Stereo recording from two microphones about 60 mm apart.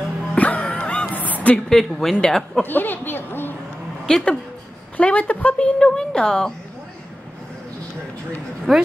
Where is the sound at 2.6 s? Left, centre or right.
Left.